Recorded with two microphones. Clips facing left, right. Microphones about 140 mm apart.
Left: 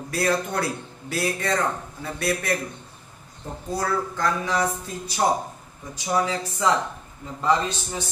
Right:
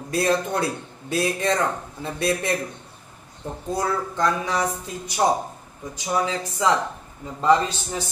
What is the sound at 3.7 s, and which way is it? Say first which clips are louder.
Speech: right 1 dB; 20° right (ahead or behind).